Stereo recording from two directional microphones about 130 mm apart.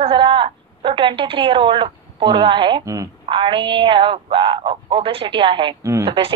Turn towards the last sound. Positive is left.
turn(degrees=-40)  # may be behind; listen again after turning